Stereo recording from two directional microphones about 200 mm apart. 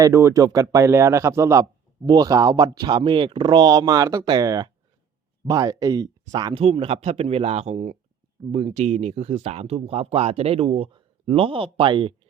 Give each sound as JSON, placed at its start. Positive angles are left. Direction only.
{"t": 0.0, "sound": "speech", "side_deg": -15}